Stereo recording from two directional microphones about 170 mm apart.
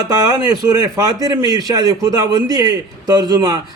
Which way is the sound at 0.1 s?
25° right (ahead or behind).